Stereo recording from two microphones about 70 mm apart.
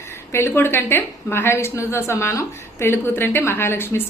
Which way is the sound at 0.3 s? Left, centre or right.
Left.